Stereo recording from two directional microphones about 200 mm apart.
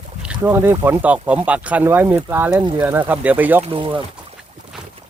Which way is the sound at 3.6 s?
25° right (ahead or behind).